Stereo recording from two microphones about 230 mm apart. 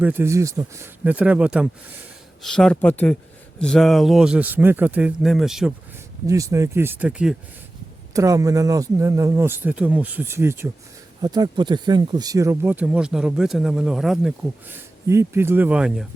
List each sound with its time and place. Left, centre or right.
0.0 s speech: centre
6.2 s speech: centre